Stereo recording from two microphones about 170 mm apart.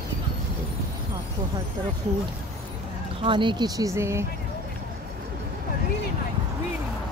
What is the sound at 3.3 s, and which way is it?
Speech, 30° right (ahead or behind).